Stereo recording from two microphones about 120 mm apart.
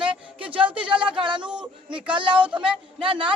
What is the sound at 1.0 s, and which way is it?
Speech, 40° right (ahead or behind).